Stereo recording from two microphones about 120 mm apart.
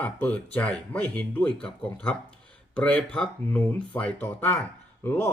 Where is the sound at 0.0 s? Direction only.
10° left (ahead or behind).